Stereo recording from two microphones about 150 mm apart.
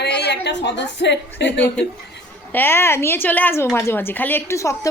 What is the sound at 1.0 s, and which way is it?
Speech, 90° left.